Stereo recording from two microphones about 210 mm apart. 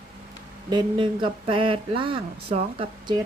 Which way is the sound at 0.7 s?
20° right (ahead or behind).